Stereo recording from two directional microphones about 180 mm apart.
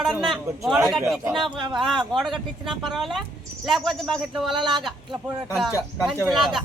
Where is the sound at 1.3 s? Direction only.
25° right (ahead or behind).